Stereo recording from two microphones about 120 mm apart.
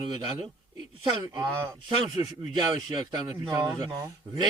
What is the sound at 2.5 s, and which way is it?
Speech, 40° right (ahead or behind).